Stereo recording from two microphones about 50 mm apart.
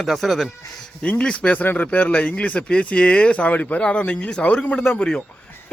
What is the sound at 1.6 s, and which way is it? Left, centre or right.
Speech, left.